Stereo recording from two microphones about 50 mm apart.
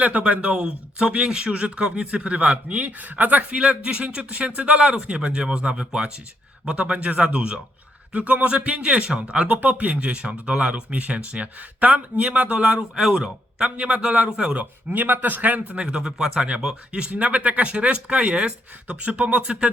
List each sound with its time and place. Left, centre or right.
0.0 s speech: right
3.6 s speech: right
14.6 s speech: right
15.7 s speech: right